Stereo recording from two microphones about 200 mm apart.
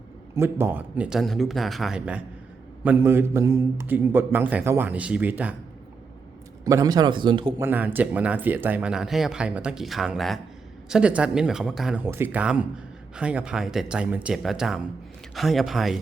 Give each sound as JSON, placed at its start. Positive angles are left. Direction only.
{"t": 0.3, "sound": "a man's voice", "side_deg": -10}
{"t": 6.7, "sound": "a man's voice", "side_deg": -20}
{"t": 7.6, "sound": "speech", "side_deg": -10}